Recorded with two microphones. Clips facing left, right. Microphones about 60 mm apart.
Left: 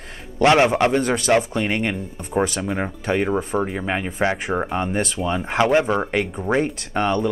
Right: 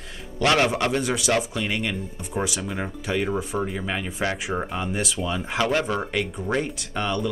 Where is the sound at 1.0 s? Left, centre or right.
Left.